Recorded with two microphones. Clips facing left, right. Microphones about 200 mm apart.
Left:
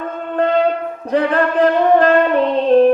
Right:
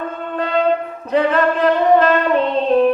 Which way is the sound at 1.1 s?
50° left (ahead or behind).